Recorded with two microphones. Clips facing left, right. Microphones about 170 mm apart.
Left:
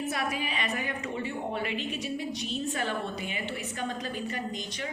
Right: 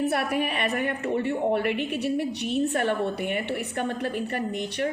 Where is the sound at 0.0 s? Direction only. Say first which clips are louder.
Right 7 dB; 65° right (ahead or behind).